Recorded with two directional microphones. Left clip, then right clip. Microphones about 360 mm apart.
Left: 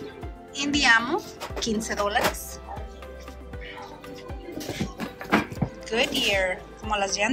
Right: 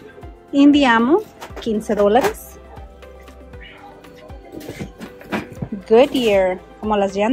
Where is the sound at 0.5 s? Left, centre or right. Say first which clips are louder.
Right 7 dB; centre.